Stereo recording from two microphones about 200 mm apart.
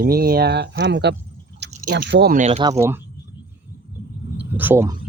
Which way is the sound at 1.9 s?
50° right (ahead or behind).